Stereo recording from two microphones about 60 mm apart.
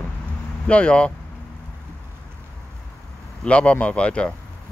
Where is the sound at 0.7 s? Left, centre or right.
Centre.